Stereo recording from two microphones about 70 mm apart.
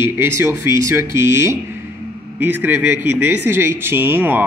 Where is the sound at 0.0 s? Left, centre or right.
Right.